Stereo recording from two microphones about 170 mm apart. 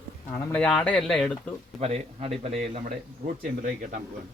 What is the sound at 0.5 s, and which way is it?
Speech, 5° left (ahead or behind).